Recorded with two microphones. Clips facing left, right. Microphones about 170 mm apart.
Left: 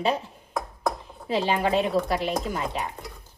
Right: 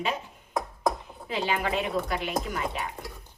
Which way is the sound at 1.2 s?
35° left (ahead or behind).